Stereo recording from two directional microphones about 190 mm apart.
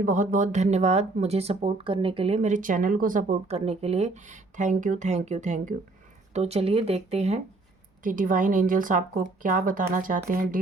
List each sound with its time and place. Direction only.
0.0 s speech: 45° right (ahead or behind)
8.0 s speech: 45° right (ahead or behind)